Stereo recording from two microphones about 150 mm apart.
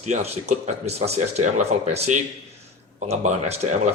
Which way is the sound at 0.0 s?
45° right (ahead or behind).